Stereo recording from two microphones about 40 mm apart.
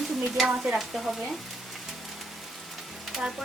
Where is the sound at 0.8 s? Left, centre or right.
Centre.